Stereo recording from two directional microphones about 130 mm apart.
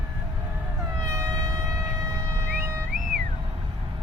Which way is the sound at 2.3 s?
20° right (ahead or behind).